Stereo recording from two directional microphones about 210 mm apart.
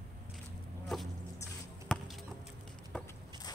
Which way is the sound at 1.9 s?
5° left (ahead or behind).